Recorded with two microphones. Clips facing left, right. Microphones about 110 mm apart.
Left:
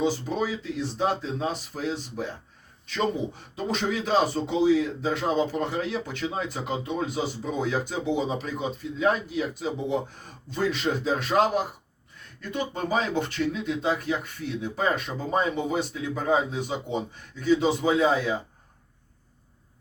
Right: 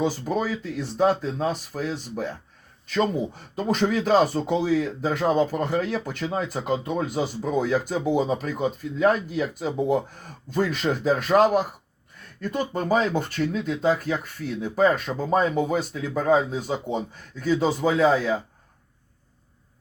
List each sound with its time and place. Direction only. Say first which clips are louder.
0.0 s speech: right 1 dB; 45° right (ahead or behind)
3.5 s speech: right 5 dB; 50° right (ahead or behind)